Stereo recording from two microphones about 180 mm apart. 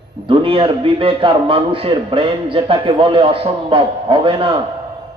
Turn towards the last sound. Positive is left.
turn(degrees=-30)  # may be behind; listen again after turning